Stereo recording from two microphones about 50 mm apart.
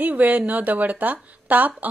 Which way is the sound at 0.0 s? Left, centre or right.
Right.